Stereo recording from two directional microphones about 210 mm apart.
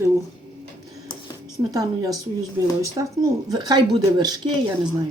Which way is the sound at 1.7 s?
15° right (ahead or behind).